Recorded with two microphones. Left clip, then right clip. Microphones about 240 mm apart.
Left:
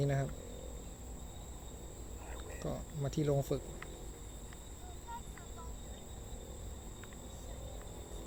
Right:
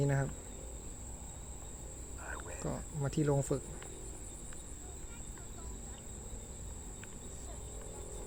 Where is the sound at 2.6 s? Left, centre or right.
Centre.